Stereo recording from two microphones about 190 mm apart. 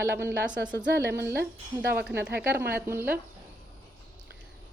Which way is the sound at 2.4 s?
60° right (ahead or behind).